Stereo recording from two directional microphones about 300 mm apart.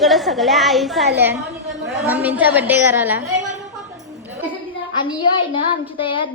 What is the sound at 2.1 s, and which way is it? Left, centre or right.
A woman's voice, centre.